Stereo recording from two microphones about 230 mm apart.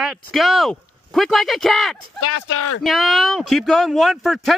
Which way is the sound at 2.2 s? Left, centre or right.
Left.